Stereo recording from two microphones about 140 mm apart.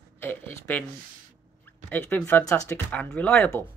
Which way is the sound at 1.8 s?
15° left (ahead or behind).